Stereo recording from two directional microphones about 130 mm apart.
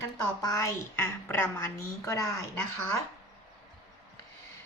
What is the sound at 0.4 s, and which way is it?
A woman's voice, 25° left (ahead or behind).